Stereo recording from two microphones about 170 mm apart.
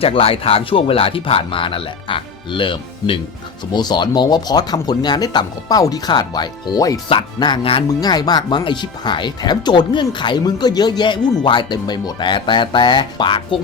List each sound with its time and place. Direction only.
0.0 s speech: 35° left (ahead or behind)